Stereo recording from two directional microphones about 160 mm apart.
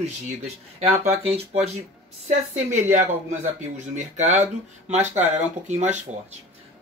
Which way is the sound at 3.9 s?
50° right (ahead or behind).